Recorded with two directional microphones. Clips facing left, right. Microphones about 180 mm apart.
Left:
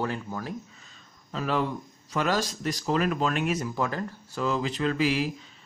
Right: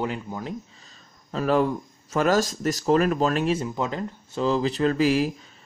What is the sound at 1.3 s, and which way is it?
Speech, 45° right (ahead or behind).